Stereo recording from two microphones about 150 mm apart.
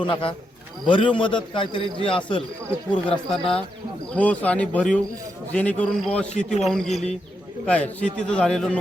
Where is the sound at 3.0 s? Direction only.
5° left (ahead or behind).